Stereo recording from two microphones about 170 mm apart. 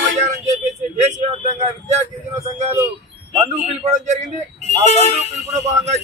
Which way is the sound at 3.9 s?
45° right (ahead or behind).